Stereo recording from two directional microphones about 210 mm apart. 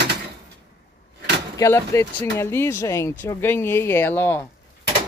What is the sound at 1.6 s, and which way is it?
Speech, 10° left (ahead or behind).